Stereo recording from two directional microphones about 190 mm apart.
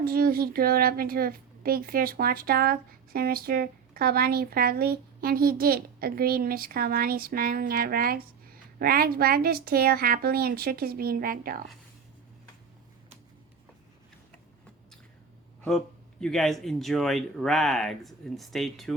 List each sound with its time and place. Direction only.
0.0 s a woman's voice: 50° right (ahead or behind)
16.2 s speech: centre (ahead or behind)